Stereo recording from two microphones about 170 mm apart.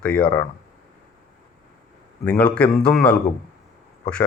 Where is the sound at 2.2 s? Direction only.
5° left (ahead or behind).